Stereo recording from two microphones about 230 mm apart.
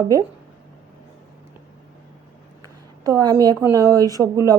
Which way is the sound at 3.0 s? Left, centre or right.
Centre.